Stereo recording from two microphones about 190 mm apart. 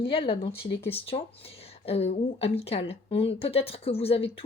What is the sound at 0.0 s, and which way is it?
A woman's voice, 30° left (ahead or behind).